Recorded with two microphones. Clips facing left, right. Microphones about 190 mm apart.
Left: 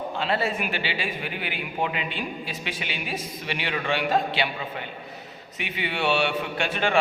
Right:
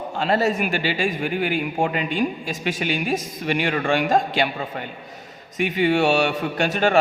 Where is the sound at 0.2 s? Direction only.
45° right (ahead or behind).